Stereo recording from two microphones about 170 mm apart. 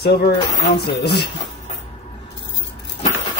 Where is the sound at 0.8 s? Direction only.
75° left (ahead or behind).